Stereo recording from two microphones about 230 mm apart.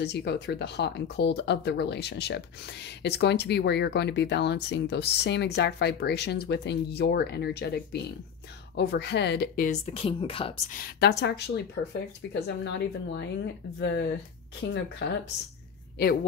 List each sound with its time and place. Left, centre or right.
0.0 s speech: left
9.7 s speech: left
10.7 s speech: left